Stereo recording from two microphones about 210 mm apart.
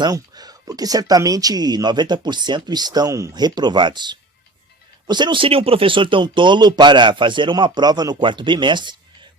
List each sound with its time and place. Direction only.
0.0 s speech: 20° right (ahead or behind)